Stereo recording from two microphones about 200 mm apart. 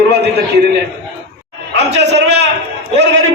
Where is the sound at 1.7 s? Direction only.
60° right (ahead or behind).